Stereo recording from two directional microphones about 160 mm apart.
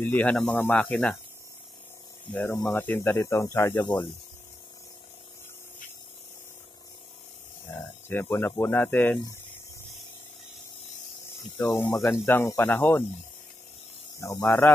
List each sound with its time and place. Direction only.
0.0 s speech: 10° left (ahead or behind)
2.3 s speech: 20° left (ahead or behind)
8.1 s speech: 15° left (ahead or behind)
11.6 s speech: 15° left (ahead or behind)
14.2 s speech: 15° left (ahead or behind)